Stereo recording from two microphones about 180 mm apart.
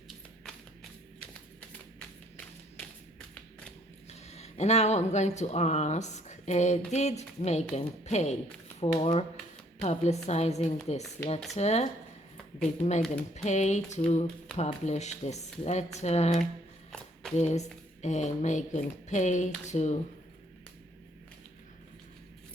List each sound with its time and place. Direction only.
4.3 s speech: 35° left (ahead or behind)